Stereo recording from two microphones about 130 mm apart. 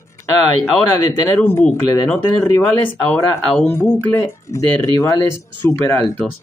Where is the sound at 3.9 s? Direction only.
20° left (ahead or behind).